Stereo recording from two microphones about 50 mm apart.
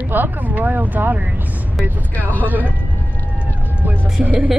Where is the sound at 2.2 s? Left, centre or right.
Left.